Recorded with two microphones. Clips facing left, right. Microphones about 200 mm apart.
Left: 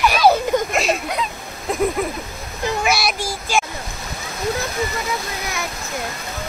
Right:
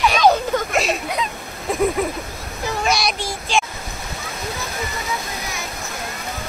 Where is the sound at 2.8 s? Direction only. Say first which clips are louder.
Right 1 dB; 5° left (ahead or behind).